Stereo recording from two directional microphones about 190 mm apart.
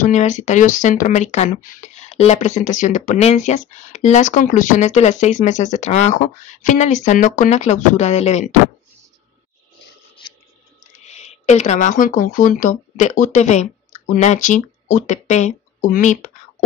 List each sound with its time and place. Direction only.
0.0 s speech: 40° left (ahead or behind)
11.1 s speech: 35° left (ahead or behind)